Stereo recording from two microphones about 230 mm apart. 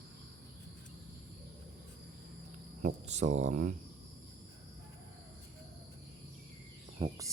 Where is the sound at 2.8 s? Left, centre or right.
Right.